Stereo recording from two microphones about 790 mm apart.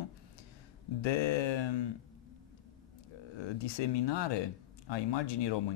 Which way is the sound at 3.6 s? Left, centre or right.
Left.